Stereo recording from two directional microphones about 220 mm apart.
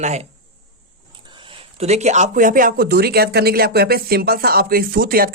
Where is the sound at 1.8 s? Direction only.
30° right (ahead or behind).